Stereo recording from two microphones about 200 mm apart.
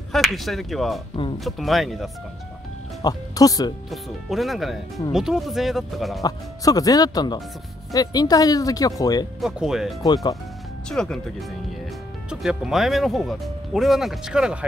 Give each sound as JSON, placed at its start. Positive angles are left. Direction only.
{"t": 0.1, "sound": "speech", "side_deg": 0}
{"t": 3.0, "sound": "speech", "side_deg": 20}
{"t": 3.9, "sound": "speech", "side_deg": 0}
{"t": 6.2, "sound": "speech", "side_deg": 20}
{"t": 9.4, "sound": "speech", "side_deg": 0}
{"t": 10.0, "sound": "speech", "side_deg": 20}
{"t": 10.9, "sound": "speech", "side_deg": 5}